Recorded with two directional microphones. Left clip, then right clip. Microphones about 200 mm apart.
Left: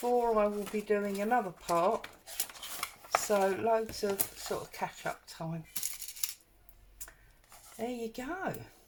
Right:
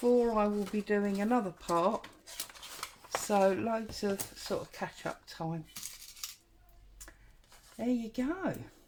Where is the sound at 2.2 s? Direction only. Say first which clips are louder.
Left 3 dB; 15° right (ahead or behind).